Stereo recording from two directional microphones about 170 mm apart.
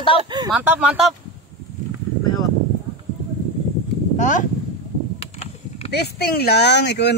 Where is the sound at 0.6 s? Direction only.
10° right (ahead or behind).